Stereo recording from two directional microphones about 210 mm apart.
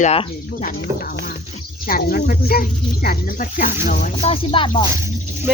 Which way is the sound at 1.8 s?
45° left (ahead or behind).